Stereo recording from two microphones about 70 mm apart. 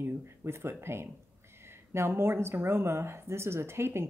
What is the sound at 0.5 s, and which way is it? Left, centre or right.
Speech, right.